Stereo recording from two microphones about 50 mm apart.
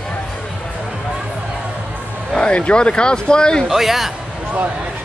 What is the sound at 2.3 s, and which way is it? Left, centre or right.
Speech, left.